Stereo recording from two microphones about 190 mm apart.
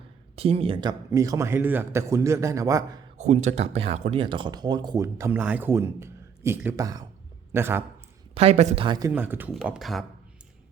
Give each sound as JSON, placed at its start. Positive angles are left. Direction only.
{"t": 0.3, "sound": "a man's voice", "side_deg": -30}
{"t": 3.2, "sound": "a man's voice", "side_deg": -35}
{"t": 8.4, "sound": "a man's voice", "side_deg": -35}